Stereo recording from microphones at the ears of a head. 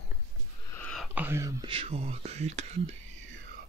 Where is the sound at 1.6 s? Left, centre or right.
Right.